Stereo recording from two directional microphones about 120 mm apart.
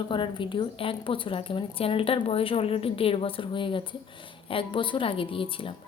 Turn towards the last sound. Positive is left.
turn(degrees=45)  # may be behind; listen again after turning